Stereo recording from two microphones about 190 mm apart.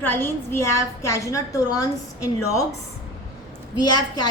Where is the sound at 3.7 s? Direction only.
20° left (ahead or behind).